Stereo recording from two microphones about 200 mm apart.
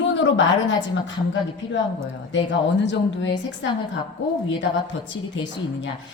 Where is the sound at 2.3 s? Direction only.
65° left (ahead or behind).